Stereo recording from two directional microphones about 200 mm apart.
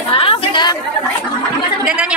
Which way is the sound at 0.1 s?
25° left (ahead or behind).